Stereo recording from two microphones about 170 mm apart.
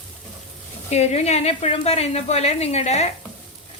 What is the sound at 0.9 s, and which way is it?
Speech, 40° left (ahead or behind).